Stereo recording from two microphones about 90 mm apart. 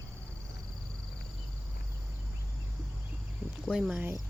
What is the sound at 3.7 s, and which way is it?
Speech, 10° right (ahead or behind).